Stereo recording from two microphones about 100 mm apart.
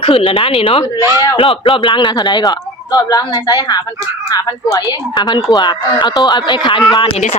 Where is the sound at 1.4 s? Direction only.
65° left (ahead or behind).